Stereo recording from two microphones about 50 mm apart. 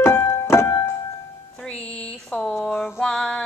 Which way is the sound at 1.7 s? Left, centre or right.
Left.